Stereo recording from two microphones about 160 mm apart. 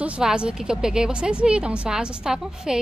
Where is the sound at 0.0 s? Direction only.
5° right (ahead or behind).